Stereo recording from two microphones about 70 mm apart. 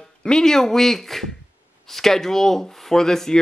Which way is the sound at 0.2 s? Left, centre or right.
Centre.